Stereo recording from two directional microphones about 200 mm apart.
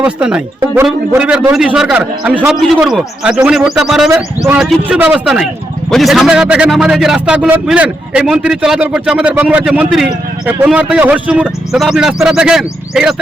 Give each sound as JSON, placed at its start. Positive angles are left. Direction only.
{"t": 0.0, "sound": "a man's voice", "side_deg": -5}